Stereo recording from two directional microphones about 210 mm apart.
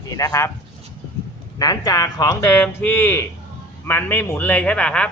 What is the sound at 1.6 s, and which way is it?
A man's voice, 15° left (ahead or behind).